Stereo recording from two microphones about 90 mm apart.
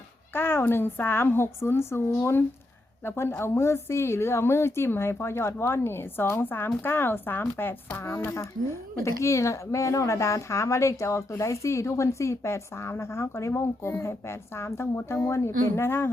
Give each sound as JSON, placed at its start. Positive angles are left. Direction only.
{"t": 0.3, "sound": "a woman's voice", "side_deg": 25}